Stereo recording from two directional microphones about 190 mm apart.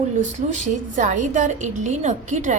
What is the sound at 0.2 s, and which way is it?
A woman's voice, 40° right (ahead or behind).